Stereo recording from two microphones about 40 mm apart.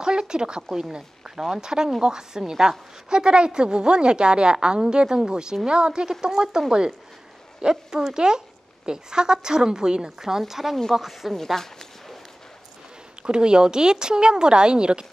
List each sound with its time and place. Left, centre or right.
0.0 s a woman's voice: centre
7.7 s a woman's voice: centre
11.3 s a sound: centre
13.2 s a woman's voice: right